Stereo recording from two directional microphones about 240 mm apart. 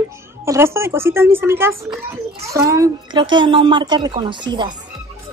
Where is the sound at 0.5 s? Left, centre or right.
Centre.